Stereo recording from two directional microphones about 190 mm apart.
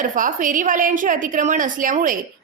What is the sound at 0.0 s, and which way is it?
A woman's voice, 45° right (ahead or behind).